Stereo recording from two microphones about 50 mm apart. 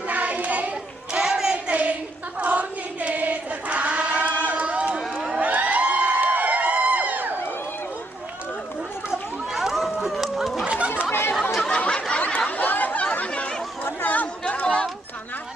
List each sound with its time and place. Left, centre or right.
0.1 s child singing: right
1.2 s a sound: right
2.4 s choir: right
4.3 s crowd: left
4.5 s crowd: right
4.9 s a sound: centre
5.4 s a sound: right
9.5 s chatter: centre
10.7 s chatter: right
11.1 s chatter: left
11.9 s a sound: left
12.5 s chatter: left
13.8 s chatter: left